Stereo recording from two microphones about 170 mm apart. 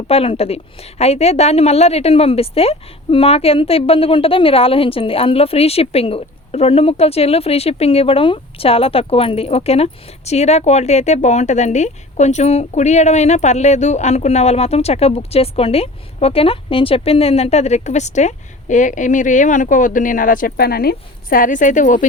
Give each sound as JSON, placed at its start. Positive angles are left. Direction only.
{"t": 0.1, "sound": "a woman's voice", "side_deg": 35}